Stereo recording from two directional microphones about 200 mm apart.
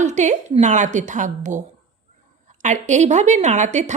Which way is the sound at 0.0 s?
35° right (ahead or behind).